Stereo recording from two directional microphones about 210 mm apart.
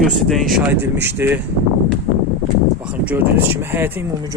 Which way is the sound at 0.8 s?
10° right (ahead or behind).